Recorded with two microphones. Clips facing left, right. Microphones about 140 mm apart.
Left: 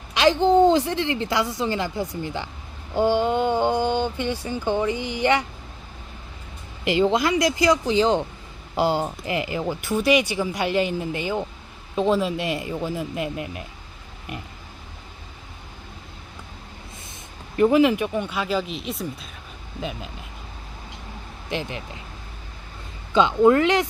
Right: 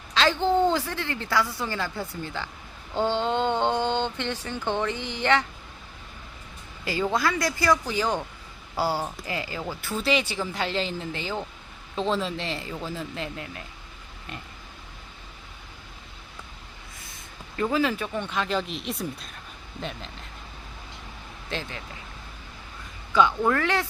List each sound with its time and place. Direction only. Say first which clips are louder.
0.1 s speech: left 5 dB; 15° left (ahead or behind)
6.8 s speech: left 6 dB; 20° left (ahead or behind)
17.6 s speech: left 8 dB; 20° left (ahead or behind)
21.5 s speech: left 5 dB; 20° left (ahead or behind)
23.1 s speech: left 6 dB; 20° left (ahead or behind)